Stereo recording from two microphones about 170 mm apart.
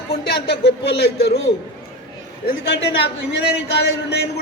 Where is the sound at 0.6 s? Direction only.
90° left.